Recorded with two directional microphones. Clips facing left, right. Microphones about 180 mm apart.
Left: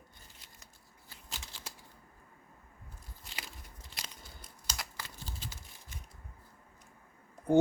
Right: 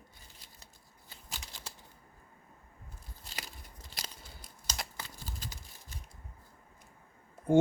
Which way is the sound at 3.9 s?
35° right (ahead or behind).